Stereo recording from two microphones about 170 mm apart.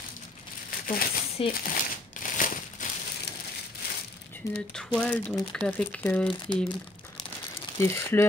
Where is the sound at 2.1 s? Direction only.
50° left (ahead or behind).